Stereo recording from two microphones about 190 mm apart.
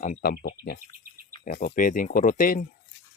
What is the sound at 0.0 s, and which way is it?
Speech, 45° left (ahead or behind).